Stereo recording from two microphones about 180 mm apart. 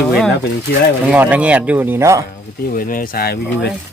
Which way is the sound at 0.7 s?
65° left (ahead or behind).